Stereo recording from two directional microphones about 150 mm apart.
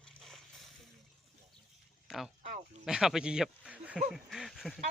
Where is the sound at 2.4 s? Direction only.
55° right (ahead or behind).